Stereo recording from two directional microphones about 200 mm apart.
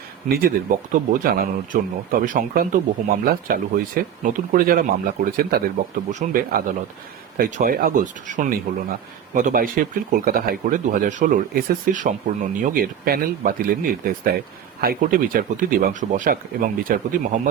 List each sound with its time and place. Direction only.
0.3 s speech: 50° right (ahead or behind)